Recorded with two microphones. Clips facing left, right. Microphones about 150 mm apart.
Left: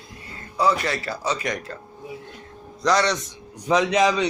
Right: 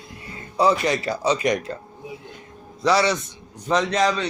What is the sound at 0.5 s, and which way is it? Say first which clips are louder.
Speech: right 3 dB; 20° right (ahead or behind).